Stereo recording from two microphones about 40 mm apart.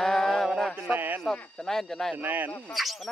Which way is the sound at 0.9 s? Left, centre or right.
Right.